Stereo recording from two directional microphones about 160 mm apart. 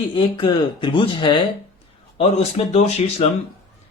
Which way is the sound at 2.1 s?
40° left (ahead or behind).